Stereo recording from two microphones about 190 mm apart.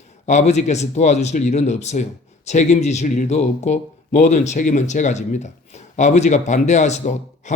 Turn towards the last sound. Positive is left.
turn(degrees=40)  # may be behind; listen again after turning